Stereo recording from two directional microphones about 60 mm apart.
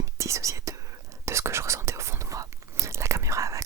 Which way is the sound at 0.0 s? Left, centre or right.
Right.